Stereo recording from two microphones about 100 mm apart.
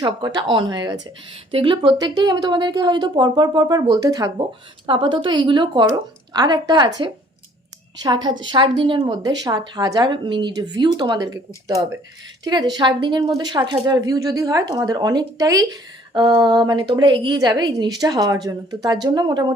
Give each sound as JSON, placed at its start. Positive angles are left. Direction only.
{"t": 0.0, "sound": "a woman's voice", "side_deg": -45}
{"t": 2.0, "sound": "a woman's voice", "side_deg": -45}
{"t": 4.9, "sound": "a woman's voice", "side_deg": -55}